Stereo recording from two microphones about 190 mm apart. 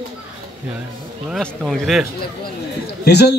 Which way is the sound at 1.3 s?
Centre (ahead or behind).